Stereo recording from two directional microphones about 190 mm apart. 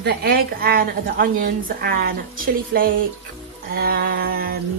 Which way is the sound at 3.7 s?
55° right (ahead or behind).